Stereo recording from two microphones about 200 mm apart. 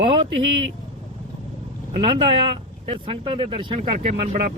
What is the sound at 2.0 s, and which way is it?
Speech, 25° right (ahead or behind).